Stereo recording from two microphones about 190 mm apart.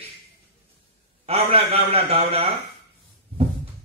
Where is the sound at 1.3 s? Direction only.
30° right (ahead or behind).